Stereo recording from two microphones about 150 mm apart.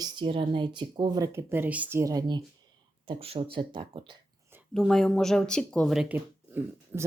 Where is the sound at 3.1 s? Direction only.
40° right (ahead or behind).